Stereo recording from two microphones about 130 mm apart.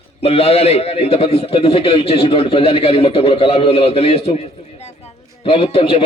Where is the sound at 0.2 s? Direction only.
50° left (ahead or behind).